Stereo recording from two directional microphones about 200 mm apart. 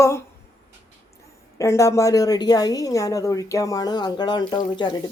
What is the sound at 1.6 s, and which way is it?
A woman's voice, 15° left (ahead or behind).